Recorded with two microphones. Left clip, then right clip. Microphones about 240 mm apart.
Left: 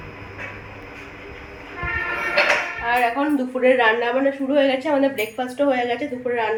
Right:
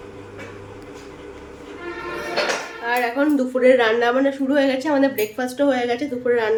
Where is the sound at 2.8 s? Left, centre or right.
Centre.